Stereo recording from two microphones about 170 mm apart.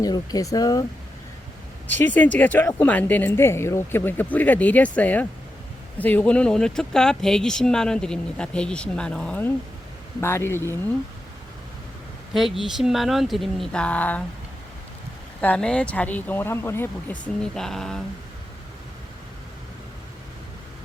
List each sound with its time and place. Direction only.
0.0 s speech: 20° left (ahead or behind)
2.0 s speech: 10° left (ahead or behind)
12.3 s speech: centre (ahead or behind)
15.4 s speech: 5° left (ahead or behind)